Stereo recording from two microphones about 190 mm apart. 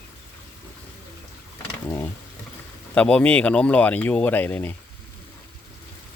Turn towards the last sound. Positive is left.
turn(degrees=10)  # may be behind; listen again after turning